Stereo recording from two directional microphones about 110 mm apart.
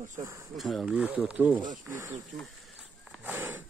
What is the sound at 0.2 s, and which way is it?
Speech, 30° right (ahead or behind).